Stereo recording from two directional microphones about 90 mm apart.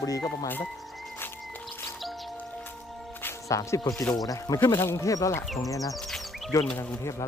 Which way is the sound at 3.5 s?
35° left (ahead or behind).